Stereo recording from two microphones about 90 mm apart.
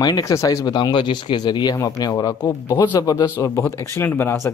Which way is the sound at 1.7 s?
35° left (ahead or behind).